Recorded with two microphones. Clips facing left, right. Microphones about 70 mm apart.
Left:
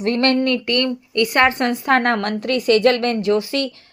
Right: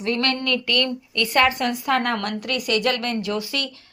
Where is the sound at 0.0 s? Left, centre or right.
Left.